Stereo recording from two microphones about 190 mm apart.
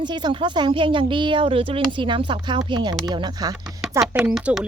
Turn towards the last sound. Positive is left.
turn(degrees=-5)  # may be behind; listen again after turning